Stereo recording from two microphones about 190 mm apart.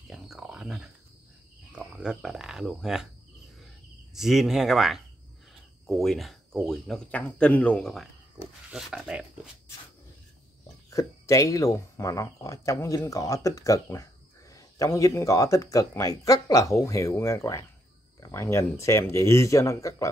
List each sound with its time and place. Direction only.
0.1 s a sound: centre (ahead or behind)
1.8 s speech: 5° right (ahead or behind)
4.1 s speech: centre (ahead or behind)
10.9 s speech: 15° left (ahead or behind)